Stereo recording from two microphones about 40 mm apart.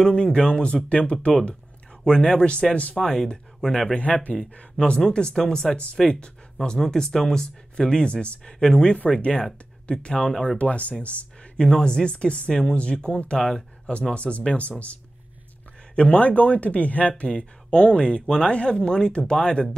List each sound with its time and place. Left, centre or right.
0.1 s speech: left
3.0 s speech: centre
4.0 s speech: left
4.7 s speech: left
10.2 s speech: centre
10.6 s speech: left
11.5 s speech: centre
13.4 s speech: centre
14.1 s speech: left
16.1 s speech: left
17.2 s speech: left
18.2 s speech: centre
18.5 s speech: left